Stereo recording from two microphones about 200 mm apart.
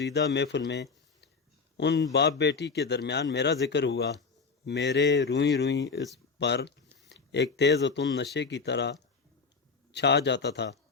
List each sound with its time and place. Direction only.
0.0 s a man's voice: 55° left (ahead or behind)